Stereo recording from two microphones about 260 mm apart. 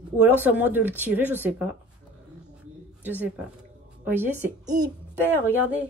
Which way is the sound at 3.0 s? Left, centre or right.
Centre.